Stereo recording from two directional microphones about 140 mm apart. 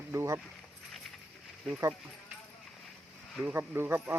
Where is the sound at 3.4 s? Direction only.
15° right (ahead or behind).